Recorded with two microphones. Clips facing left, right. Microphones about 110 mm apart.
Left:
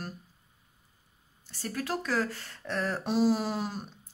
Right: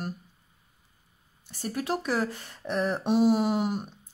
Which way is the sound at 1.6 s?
20° right (ahead or behind).